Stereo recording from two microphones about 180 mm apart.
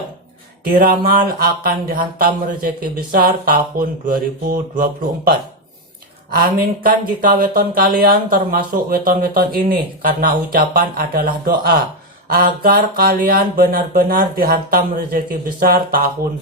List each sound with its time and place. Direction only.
0.7 s speech: 55° right (ahead or behind)